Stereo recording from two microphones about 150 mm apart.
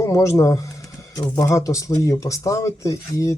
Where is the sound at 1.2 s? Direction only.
20° left (ahead or behind).